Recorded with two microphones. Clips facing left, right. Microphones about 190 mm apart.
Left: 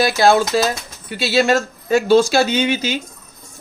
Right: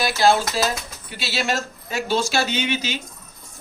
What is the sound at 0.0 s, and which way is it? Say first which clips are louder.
Speech: left 4 dB; 55° left (ahead or behind).